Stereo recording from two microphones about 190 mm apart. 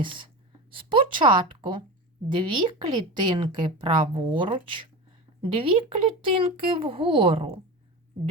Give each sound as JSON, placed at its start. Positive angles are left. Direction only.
{"t": 0.0, "sound": "a woman's voice", "side_deg": -25}